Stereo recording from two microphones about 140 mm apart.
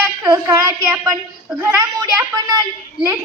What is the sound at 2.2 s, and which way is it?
Speech, 25° right (ahead or behind).